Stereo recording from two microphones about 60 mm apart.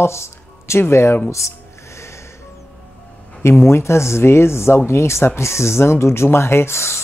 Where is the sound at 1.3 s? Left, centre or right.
Left.